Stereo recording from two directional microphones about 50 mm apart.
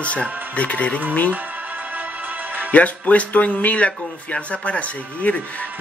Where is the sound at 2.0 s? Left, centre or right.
Right.